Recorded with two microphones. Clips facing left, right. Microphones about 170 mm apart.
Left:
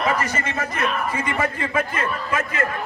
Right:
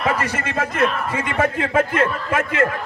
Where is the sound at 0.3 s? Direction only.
60° right (ahead or behind).